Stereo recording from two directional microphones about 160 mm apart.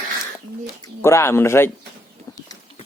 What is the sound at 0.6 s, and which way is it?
Speech, 15° left (ahead or behind).